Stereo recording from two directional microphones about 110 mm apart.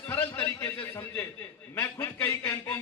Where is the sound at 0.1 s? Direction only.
20° left (ahead or behind).